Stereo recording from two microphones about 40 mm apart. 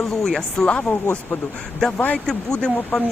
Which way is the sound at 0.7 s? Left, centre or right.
Left.